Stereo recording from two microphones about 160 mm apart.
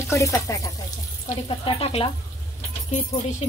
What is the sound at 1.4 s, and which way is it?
Speech, 35° left (ahead or behind).